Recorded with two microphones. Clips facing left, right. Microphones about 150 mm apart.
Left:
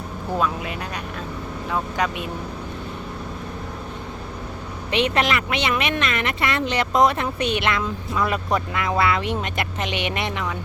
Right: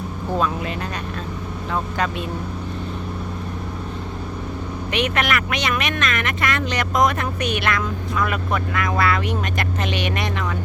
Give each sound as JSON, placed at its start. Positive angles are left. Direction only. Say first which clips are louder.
{"t": 0.3, "sound": "speech", "louder": "right 1 dB", "side_deg": 5}
{"t": 4.9, "sound": "speech", "louder": "left 1 dB", "side_deg": 30}